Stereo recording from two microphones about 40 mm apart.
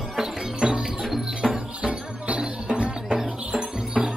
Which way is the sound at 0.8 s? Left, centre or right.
Centre.